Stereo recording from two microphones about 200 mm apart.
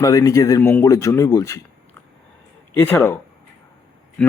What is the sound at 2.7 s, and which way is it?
Speech, 10° left (ahead or behind).